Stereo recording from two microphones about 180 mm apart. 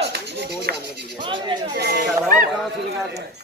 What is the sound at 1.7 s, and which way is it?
Speech, 65° right (ahead or behind).